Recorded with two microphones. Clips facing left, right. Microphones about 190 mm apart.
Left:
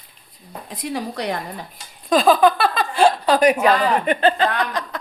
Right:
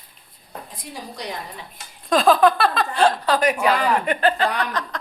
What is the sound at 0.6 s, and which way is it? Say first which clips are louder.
Speech: left 13 dB; 75° left (ahead or behind).